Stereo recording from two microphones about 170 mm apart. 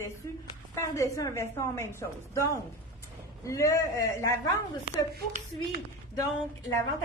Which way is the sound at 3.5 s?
20° left (ahead or behind).